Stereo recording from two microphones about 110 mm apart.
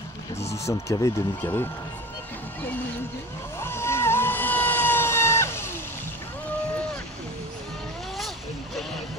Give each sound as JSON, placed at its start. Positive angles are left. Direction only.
{"t": 0.5, "sound": "speech", "side_deg": 25}
{"t": 3.6, "sound": "vehicle", "side_deg": 20}